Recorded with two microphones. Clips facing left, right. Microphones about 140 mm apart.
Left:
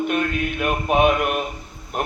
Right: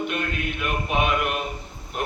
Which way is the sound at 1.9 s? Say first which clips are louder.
Left 3 dB; 45° left (ahead or behind).